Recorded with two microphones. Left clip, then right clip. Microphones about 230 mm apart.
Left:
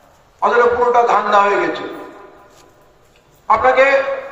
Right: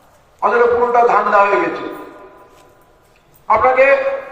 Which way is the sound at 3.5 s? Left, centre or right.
Left.